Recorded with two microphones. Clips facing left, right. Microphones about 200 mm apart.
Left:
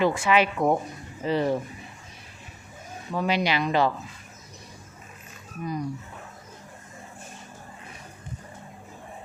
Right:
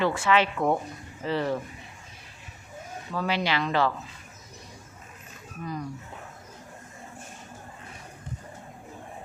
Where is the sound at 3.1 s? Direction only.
15° left (ahead or behind).